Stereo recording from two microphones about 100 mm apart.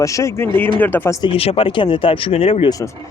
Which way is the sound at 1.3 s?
70° left (ahead or behind).